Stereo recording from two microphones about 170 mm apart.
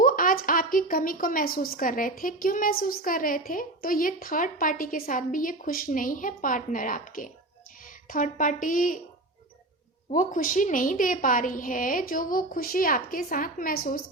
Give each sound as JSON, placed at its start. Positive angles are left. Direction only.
{"t": 0.0, "sound": "a woman's voice", "side_deg": 55}
{"t": 10.1, "sound": "a woman's voice", "side_deg": 50}